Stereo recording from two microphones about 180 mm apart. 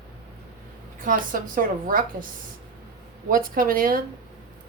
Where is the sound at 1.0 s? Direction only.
50° right (ahead or behind).